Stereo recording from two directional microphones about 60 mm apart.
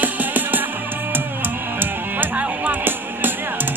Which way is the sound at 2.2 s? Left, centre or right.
Right.